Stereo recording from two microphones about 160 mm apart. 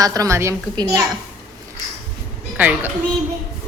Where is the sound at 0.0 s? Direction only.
20° right (ahead or behind).